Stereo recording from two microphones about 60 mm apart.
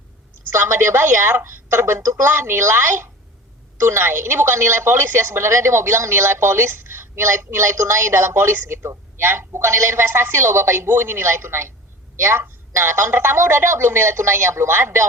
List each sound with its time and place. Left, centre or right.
0.5 s a woman's voice: right